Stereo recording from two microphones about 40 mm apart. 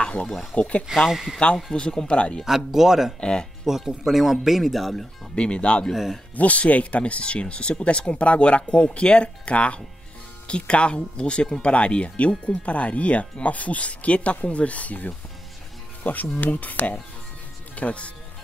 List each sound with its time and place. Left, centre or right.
0.6 s speech: left
1.1 s speech: centre
1.7 s speech: left
2.4 s speech: centre
3.2 s speech: left
3.6 s speech: centre
5.3 s speech: left